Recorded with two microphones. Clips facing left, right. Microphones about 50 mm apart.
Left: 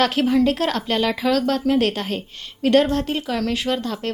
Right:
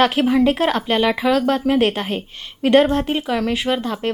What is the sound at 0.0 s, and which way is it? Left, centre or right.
A woman's voice, centre.